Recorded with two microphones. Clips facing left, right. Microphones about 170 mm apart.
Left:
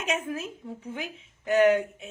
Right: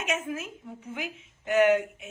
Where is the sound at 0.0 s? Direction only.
30° left (ahead or behind).